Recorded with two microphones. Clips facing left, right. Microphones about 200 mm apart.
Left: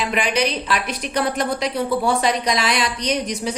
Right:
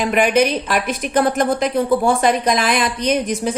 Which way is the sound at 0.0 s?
50° right (ahead or behind).